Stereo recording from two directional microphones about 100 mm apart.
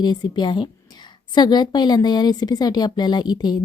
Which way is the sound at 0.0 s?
45° left (ahead or behind).